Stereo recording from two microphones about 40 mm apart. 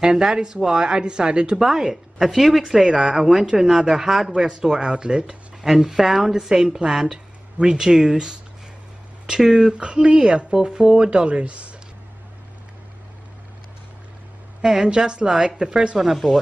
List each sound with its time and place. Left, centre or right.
0.0 s speech: centre
1.6 s speech: centre; by 11.7 s right
14.6 s speech: centre
16.0 s speech: centre